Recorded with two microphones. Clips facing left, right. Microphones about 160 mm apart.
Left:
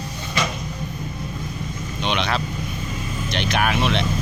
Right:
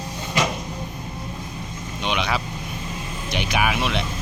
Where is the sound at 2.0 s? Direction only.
5° right (ahead or behind).